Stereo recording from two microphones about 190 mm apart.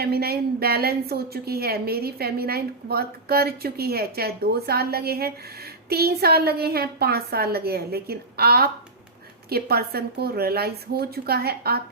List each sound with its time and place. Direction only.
0.0 s a woman's voice: 55° right (ahead or behind)